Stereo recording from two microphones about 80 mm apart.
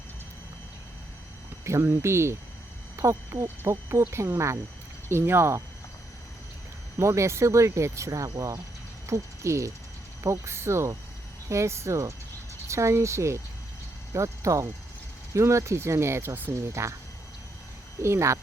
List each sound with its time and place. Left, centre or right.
1.6 s speech: right
7.0 s speech: right
16.6 s speech: right
18.0 s speech: right